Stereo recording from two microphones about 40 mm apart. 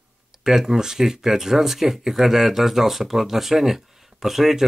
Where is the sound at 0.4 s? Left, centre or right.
Centre.